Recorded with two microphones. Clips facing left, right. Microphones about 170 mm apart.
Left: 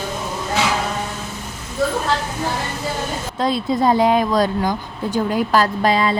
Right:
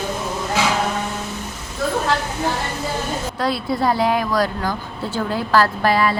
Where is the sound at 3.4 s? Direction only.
20° left (ahead or behind).